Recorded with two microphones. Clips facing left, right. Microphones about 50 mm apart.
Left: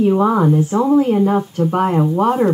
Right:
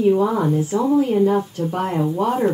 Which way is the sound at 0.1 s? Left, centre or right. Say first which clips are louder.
Left 4 dB; left.